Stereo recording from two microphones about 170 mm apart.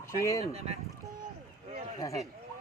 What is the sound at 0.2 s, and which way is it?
Speech, 20° left (ahead or behind).